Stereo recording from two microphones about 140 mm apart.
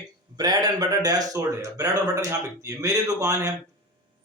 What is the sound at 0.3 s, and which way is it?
A man's voice, 30° right (ahead or behind).